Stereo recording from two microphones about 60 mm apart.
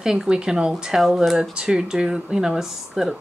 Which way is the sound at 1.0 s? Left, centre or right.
Centre.